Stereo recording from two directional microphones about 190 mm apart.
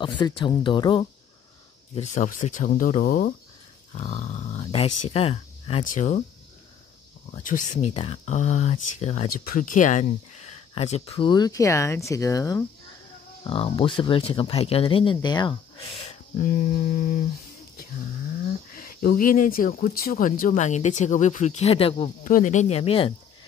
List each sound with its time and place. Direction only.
0.4 s speech: 25° left (ahead or behind)
2.0 s speech: 45° left (ahead or behind)
3.9 s dog: 35° left (ahead or behind)
4.6 s speech: 35° left (ahead or behind)
7.2 s speech: 40° left (ahead or behind); by 12.6 s 15° left (ahead or behind)
13.4 s speech: 30° left (ahead or behind)
16.4 s speech: 45° left (ahead or behind)
18.7 s speech: 50° left (ahead or behind); by 22.1 s 30° left (ahead or behind)
22.2 s speech: 40° left (ahead or behind)